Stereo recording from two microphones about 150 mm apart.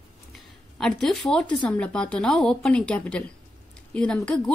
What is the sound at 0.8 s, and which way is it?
A woman's voice, 5° left (ahead or behind).